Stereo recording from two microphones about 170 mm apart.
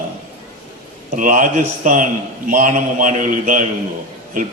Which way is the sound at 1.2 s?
50° right (ahead or behind).